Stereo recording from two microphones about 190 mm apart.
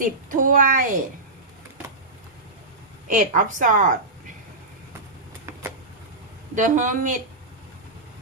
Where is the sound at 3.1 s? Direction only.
40° right (ahead or behind).